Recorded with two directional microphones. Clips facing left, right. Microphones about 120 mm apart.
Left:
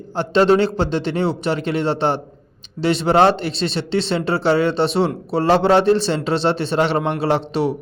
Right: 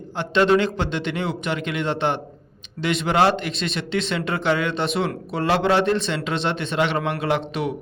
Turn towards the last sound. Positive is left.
turn(degrees=35)  # may be behind; listen again after turning